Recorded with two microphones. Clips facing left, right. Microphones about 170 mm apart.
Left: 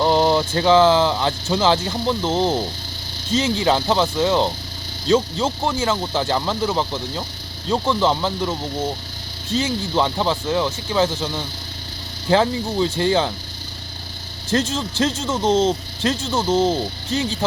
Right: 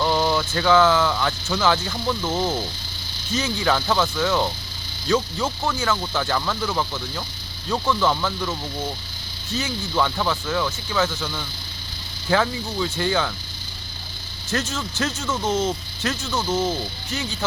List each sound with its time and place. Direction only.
0.0 s speech: 30° left (ahead or behind)
9.6 s speech: 25° left (ahead or behind)
14.5 s speech: 30° left (ahead or behind)